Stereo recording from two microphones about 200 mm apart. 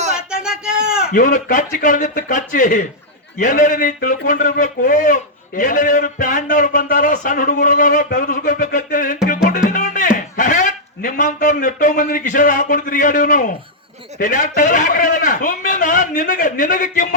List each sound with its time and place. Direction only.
0.2 s a sound: 5° right (ahead or behind)
1.1 s a man's voice: 40° left (ahead or behind)
9.2 s music: 40° left (ahead or behind)
14.2 s a man's voice: 40° left (ahead or behind)